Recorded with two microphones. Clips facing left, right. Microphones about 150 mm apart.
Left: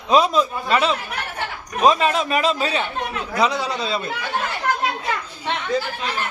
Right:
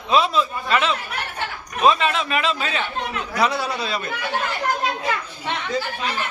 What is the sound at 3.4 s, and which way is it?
Speech, 15° left (ahead or behind).